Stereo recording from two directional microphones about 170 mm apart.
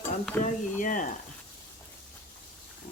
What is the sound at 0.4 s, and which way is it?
Speech, 50° left (ahead or behind).